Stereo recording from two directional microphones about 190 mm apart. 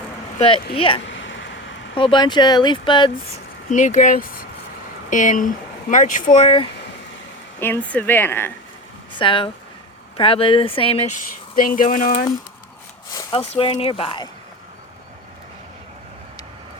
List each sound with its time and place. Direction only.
0.3 s speech: 30° left (ahead or behind)
1.0 s a sound: 75° left (ahead or behind)
2.0 s speech: 25° left (ahead or behind)
3.7 s speech: 40° left (ahead or behind)
7.6 s a woman's voice: 10° left (ahead or behind)
9.1 s speech: 25° left (ahead or behind)
11.5 s speech: 50° left (ahead or behind)
13.6 s speech: 30° left (ahead or behind)